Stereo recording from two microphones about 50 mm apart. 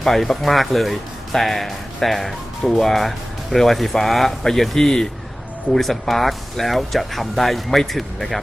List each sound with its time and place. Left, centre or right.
0.0 s speech: centre